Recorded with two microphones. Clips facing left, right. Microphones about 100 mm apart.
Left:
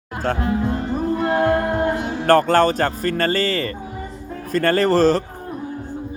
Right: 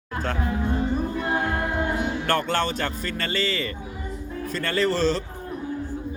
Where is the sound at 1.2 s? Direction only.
65° left (ahead or behind); by 3.7 s 45° left (ahead or behind).